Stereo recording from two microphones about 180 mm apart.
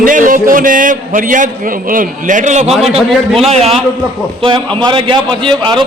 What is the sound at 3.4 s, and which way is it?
A man's voice, 35° right (ahead or behind).